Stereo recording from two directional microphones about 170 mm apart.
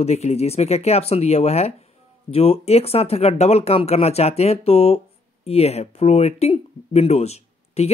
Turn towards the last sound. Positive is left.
turn(degrees=40)  # may be behind; listen again after turning